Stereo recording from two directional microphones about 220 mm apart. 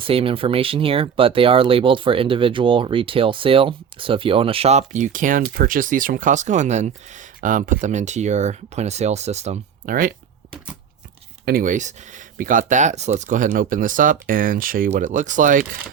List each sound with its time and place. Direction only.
0.0 s speech: 25° right (ahead or behind)
11.4 s speech: 40° right (ahead or behind)